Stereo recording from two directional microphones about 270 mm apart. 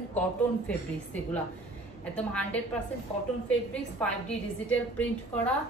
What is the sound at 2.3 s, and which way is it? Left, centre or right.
A woman's voice, centre.